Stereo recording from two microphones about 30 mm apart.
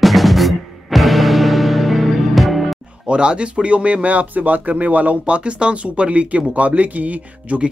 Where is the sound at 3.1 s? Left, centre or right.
Right.